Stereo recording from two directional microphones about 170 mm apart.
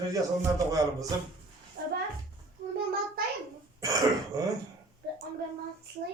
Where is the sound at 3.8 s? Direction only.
20° right (ahead or behind).